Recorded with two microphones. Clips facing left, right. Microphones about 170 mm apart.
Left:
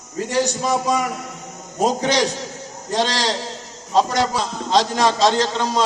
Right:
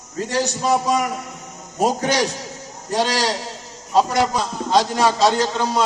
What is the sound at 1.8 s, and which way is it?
A man's voice, 10° right (ahead or behind).